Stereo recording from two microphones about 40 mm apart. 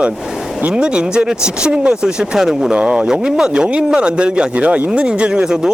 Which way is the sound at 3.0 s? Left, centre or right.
Centre.